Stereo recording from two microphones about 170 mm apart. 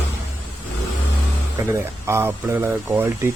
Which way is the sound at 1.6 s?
15° right (ahead or behind).